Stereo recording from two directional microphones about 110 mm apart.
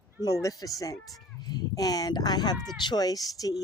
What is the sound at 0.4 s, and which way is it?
Speech, 30° left (ahead or behind).